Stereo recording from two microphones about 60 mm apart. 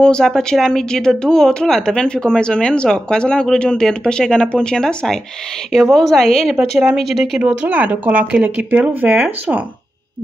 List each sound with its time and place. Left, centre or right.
0.0 s a woman's voice: centre
6.5 s speech: right
7.0 s a woman's voice: centre
7.4 s speech: right